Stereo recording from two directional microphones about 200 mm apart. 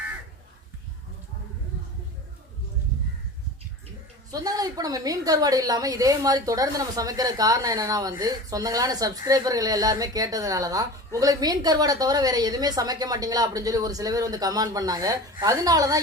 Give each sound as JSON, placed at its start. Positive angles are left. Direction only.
{"t": 4.3, "sound": "speech", "side_deg": -15}